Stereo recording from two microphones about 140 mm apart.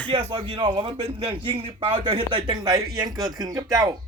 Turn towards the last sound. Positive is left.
turn(degrees=-25)  # may be behind; listen again after turning